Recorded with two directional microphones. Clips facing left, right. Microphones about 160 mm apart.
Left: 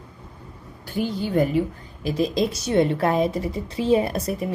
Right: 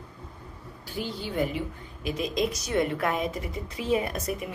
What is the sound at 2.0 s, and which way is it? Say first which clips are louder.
A woman's voice: left 6 dB; 35° left (ahead or behind).